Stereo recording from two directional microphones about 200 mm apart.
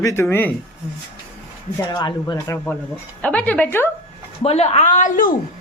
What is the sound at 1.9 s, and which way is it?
Speech, 20° left (ahead or behind).